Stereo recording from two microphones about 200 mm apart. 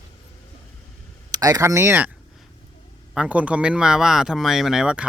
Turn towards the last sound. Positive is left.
turn(degrees=-5)  # may be behind; listen again after turning